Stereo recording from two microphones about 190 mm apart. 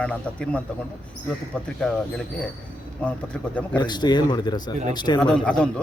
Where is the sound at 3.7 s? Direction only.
20° left (ahead or behind).